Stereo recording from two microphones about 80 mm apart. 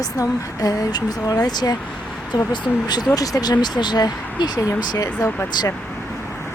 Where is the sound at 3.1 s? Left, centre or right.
Left.